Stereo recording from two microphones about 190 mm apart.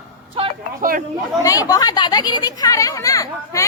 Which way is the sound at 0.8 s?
45° right (ahead or behind).